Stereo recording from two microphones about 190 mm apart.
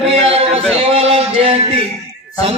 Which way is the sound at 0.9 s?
30° right (ahead or behind).